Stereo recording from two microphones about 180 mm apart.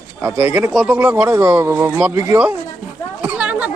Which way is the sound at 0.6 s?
5° right (ahead or behind).